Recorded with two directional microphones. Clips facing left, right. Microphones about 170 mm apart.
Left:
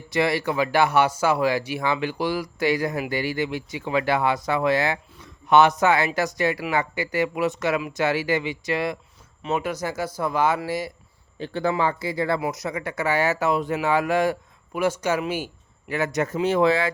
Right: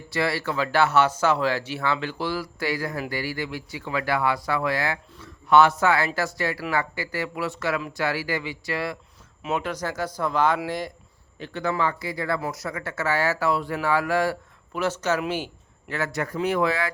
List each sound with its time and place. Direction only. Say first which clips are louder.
0.1 s speech: left 3 dB; 20° left (ahead or behind)
9.4 s speech: left 2 dB; centre (ahead or behind)
9.6 s speech: left 2 dB; 10° left (ahead or behind)
11.3 s speech: left 3 dB; 30° left (ahead or behind)